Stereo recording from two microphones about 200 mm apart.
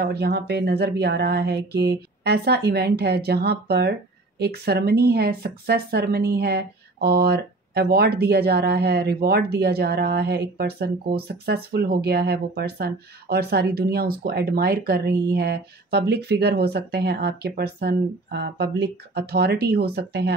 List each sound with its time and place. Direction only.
0.0 s speech: 55° right (ahead or behind)